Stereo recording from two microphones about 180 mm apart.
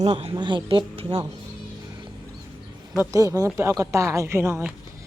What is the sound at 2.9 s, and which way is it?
Speech, 15° right (ahead or behind).